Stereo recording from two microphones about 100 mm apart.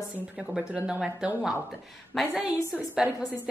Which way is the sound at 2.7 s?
10° right (ahead or behind).